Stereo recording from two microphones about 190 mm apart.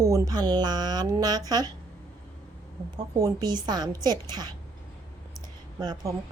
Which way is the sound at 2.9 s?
20° right (ahead or behind).